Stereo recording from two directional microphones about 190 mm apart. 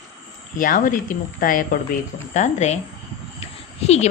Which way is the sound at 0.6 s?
45° left (ahead or behind).